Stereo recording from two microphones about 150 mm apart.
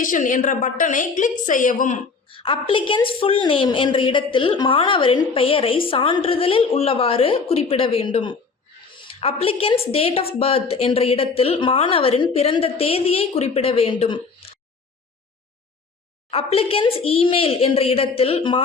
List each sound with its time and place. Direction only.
0.0 s a woman's voice: 60° left (ahead or behind)
2.2 s a woman's voice: 35° left (ahead or behind)
16.3 s a woman's voice: 40° left (ahead or behind)